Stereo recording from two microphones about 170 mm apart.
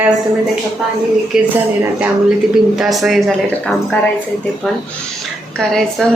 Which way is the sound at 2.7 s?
Centre (ahead or behind).